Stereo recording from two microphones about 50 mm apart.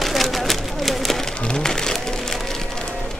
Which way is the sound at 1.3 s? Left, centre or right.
Centre.